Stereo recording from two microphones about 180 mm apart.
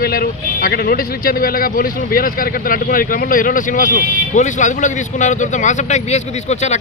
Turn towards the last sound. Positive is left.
turn(degrees=40)  # may be behind; listen again after turning